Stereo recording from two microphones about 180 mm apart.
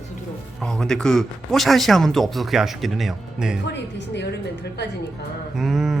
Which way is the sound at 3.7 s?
75° left (ahead or behind).